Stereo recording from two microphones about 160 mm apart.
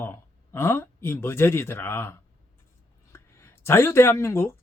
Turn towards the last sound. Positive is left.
turn(degrees=15)  # may be behind; listen again after turning